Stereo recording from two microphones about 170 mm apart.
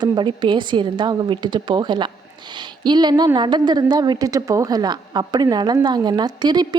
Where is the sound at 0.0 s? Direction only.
25° right (ahead or behind).